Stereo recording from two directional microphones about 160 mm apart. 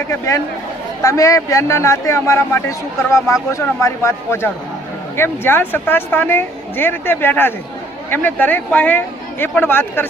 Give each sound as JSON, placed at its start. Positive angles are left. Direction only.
{"t": 0.1, "sound": "a man's voice", "side_deg": 20}